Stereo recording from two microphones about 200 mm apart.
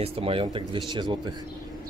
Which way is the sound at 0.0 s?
25° right (ahead or behind).